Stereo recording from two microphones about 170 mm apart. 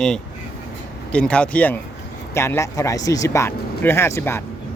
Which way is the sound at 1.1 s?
5° left (ahead or behind).